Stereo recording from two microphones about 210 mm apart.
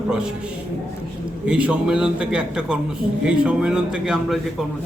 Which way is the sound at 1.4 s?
5° right (ahead or behind).